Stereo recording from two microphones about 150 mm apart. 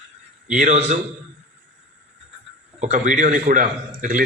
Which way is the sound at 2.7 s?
50° right (ahead or behind).